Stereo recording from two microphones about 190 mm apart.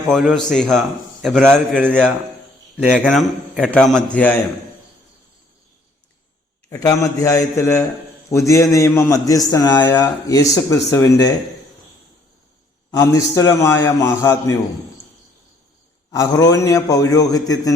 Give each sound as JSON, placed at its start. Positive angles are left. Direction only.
{"t": 0.1, "sound": "a man's voice", "side_deg": 0}
{"t": 1.7, "sound": "a man's voice", "side_deg": -10}
{"t": 3.0, "sound": "a man's voice", "side_deg": 5}
{"t": 6.7, "sound": "a man's voice", "side_deg": 20}
{"t": 12.9, "sound": "a man's voice", "side_deg": 15}
{"t": 16.1, "sound": "a man's voice", "side_deg": 20}